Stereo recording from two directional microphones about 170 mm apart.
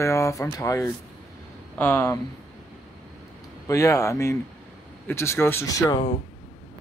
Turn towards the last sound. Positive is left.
turn(degrees=20)  # may be behind; listen again after turning